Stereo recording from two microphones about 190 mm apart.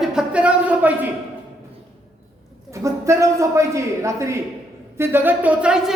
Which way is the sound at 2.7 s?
15° right (ahead or behind).